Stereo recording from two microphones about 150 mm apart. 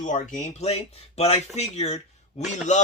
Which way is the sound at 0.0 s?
55° left (ahead or behind).